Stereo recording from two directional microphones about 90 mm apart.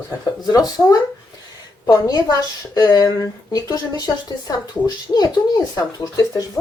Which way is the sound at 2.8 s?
50° left (ahead or behind).